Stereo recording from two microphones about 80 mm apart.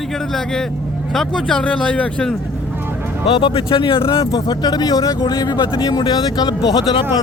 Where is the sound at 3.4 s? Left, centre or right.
Left.